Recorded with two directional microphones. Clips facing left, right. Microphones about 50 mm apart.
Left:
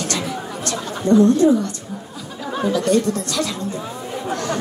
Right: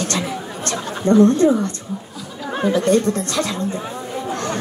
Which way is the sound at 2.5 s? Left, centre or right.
Right.